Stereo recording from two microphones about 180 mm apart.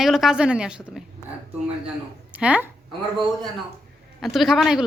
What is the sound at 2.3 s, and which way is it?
Speech, 10° right (ahead or behind).